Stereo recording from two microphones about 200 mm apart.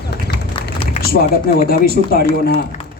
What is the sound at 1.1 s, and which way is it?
A man's voice, 50° left (ahead or behind).